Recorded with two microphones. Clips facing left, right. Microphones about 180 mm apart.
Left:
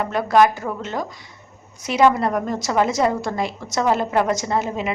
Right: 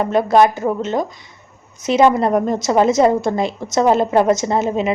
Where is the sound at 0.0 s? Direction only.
25° right (ahead or behind).